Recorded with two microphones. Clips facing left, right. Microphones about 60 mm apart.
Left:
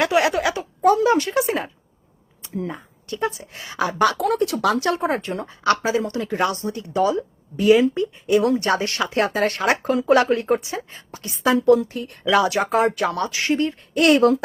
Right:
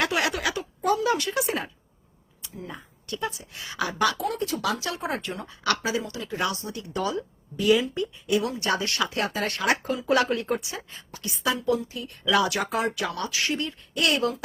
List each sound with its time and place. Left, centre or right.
0.0 s a sound: left
2.6 s speech: left
4.2 s speech: left
4.6 s speech: left
6.0 s speech: left
11.5 s speech: left
12.3 s speech: left